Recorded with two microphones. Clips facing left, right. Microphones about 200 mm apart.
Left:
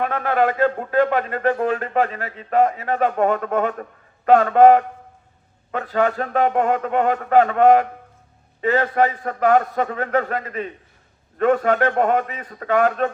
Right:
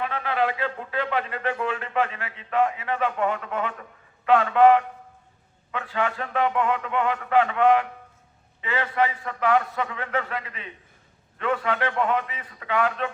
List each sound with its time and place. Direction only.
0.0 s a man's voice: 50° left (ahead or behind)